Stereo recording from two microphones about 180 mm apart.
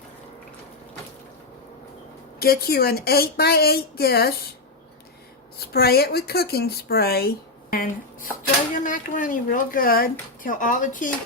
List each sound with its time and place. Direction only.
2.4 s speech: 60° left (ahead or behind)
5.5 s speech: 60° left (ahead or behind)